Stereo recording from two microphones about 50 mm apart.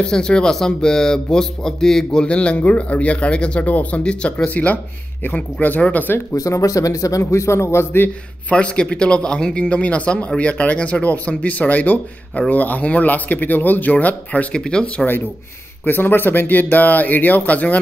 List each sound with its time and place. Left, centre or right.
0.0 s speech: centre
2.2 s a man's voice: left
3.6 s speech: left
4.0 s a man's voice: left
6.1 s speech: left
8.5 s a man's voice: left
14.5 s speech: centre
15.8 s speech: left